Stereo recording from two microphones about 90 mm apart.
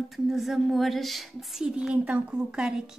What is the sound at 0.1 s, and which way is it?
A woman's voice, centre (ahead or behind).